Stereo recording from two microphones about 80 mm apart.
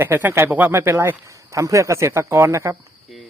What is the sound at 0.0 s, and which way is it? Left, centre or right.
Speech, right.